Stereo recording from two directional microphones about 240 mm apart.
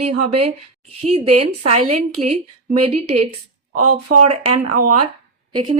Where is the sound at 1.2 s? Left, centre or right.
Right.